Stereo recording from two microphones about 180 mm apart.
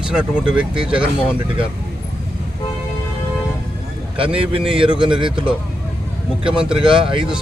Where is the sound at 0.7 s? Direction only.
30° right (ahead or behind).